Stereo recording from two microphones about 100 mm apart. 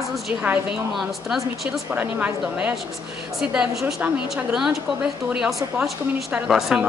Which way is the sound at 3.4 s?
5° right (ahead or behind).